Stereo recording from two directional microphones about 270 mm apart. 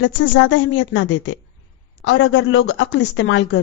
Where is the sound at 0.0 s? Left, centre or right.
Left.